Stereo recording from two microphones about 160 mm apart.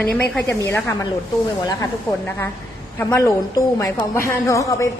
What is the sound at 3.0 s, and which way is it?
A woman's voice, 20° left (ahead or behind).